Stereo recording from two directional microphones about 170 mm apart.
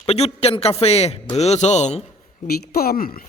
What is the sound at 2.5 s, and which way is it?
Speech, 60° left (ahead or behind).